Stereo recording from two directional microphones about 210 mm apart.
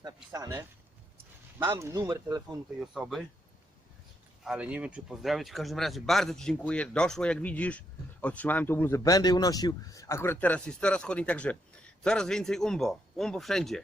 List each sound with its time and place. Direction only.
0.3 s speech: 15° right (ahead or behind)
2.8 s speech: centre (ahead or behind)
4.4 s speech: 5° right (ahead or behind)